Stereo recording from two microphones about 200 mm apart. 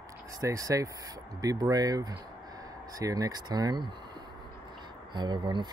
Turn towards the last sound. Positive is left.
turn(degrees=-20)  # may be behind; listen again after turning